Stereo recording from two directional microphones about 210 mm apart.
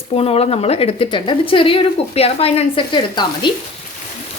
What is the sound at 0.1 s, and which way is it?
A woman's voice, 30° left (ahead or behind).